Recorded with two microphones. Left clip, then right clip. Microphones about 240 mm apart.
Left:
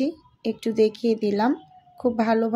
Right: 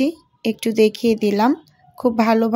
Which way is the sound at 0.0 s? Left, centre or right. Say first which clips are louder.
Right 5 dB; right.